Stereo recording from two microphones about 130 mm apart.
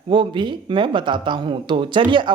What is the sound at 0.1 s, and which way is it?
Speech, 40° right (ahead or behind).